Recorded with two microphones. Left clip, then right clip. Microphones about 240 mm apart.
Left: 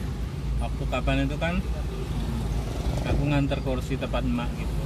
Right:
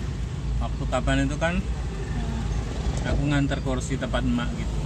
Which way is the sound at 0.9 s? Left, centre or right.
Centre.